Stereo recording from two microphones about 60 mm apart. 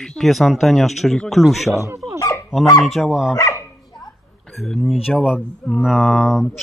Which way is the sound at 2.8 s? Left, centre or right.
Centre.